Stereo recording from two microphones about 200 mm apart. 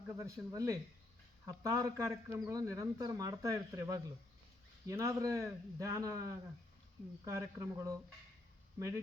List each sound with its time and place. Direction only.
0.2 s a man's voice: 15° right (ahead or behind)